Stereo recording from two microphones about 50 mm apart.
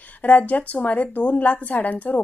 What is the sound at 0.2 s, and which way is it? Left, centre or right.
A woman's voice, left.